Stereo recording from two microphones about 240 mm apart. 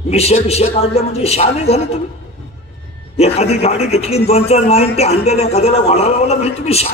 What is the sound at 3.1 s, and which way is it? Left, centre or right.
A man's voice, left.